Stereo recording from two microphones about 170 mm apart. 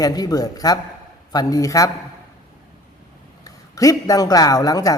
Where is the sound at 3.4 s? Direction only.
20° left (ahead or behind).